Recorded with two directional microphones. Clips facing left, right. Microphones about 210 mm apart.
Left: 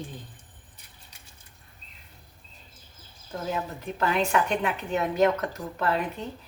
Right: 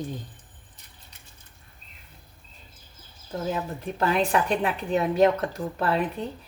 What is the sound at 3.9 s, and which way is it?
A woman's voice, 35° right (ahead or behind).